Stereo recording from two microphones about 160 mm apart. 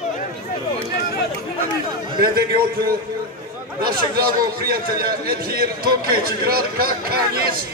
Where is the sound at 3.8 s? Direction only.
70° right (ahead or behind).